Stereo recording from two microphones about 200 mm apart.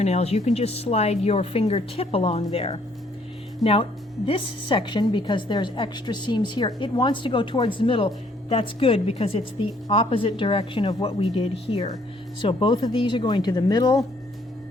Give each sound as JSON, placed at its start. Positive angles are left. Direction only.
{"t": 0.0, "sound": "a woman's voice", "side_deg": 35}
{"t": 3.6, "sound": "speech", "side_deg": 0}
{"t": 4.3, "sound": "a woman's voice", "side_deg": 25}